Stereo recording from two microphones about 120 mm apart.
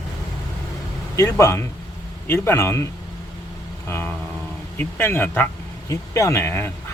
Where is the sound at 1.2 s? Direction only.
25° left (ahead or behind).